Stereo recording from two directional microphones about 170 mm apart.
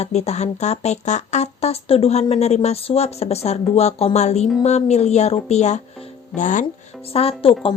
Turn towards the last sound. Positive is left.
turn(degrees=35)  # may be behind; listen again after turning